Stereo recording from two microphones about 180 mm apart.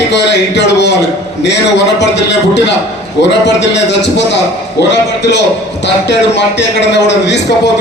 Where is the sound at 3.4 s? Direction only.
75° left (ahead or behind).